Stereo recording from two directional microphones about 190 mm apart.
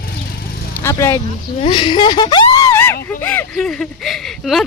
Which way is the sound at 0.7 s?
15° left (ahead or behind).